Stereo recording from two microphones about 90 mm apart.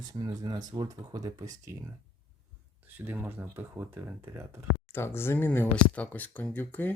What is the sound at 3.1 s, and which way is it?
Speech, 20° right (ahead or behind).